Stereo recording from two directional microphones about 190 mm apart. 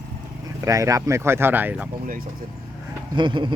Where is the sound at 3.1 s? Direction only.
25° right (ahead or behind).